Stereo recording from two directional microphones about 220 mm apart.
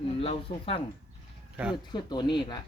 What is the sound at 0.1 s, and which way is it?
Speech, 25° left (ahead or behind).